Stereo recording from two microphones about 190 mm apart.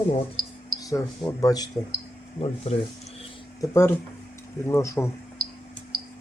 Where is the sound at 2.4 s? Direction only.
30° left (ahead or behind).